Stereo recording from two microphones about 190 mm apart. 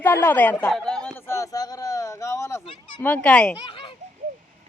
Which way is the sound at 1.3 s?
15° left (ahead or behind).